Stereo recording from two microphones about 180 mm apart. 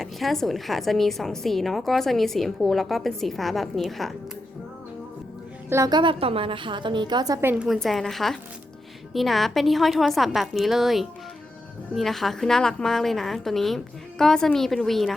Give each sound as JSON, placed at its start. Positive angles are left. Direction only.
{"t": 0.0, "sound": "a woman's voice", "side_deg": 0}
{"t": 5.6, "sound": "a woman's voice", "side_deg": -15}
{"t": 7.4, "sound": "a woman's voice", "side_deg": -5}